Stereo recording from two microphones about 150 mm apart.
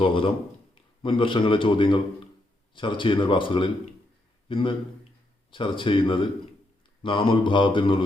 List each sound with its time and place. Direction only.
0.0 s a man's voice: 35° left (ahead or behind)